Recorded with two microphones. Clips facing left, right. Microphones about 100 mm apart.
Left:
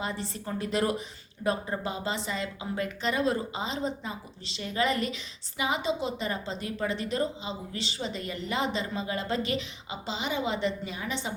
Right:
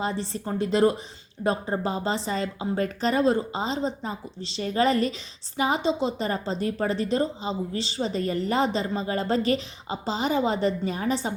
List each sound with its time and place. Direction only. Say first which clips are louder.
0.0 s a woman's voice: right 5 dB; 35° right (ahead or behind)